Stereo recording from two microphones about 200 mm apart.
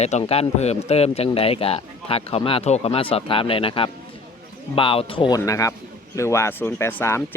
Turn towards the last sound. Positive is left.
turn(degrees=10)  # may be behind; listen again after turning